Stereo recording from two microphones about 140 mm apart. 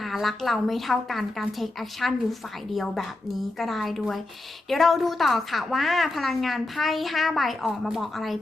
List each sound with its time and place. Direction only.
0.0 s a woman's voice: centre (ahead or behind)